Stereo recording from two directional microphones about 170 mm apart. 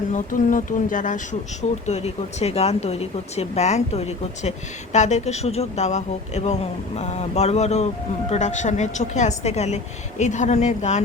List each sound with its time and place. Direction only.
0.1 s a woman's voice: 50° left (ahead or behind)